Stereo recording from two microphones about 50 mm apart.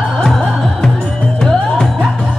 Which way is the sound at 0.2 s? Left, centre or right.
Centre.